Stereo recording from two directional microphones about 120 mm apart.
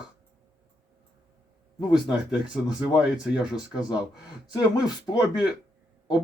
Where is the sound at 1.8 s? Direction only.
40° left (ahead or behind).